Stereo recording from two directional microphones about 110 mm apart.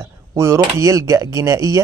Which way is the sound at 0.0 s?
30° right (ahead or behind).